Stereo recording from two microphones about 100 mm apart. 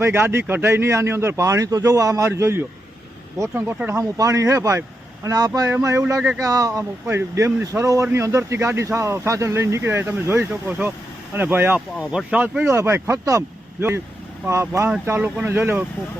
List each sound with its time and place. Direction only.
0.0 s speech: 25° right (ahead or behind)
5.7 s speech: 25° right (ahead or behind); by 12.6 s 10° right (ahead or behind)
12.6 s speech: 25° right (ahead or behind)